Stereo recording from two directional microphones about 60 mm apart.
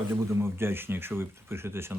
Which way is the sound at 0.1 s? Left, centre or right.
Right.